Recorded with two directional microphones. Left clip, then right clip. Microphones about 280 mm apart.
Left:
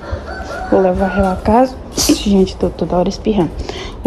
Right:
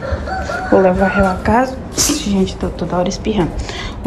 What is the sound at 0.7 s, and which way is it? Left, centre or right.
A woman's voice, centre.